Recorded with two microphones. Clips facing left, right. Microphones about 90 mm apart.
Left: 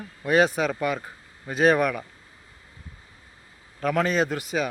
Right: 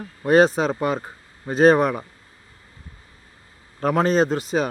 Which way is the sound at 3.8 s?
35° right (ahead or behind).